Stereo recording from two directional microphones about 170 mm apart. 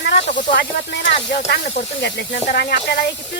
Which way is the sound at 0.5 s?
90° left.